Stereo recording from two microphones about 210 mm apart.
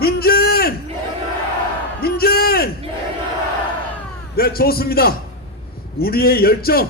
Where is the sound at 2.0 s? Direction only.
45° left (ahead or behind).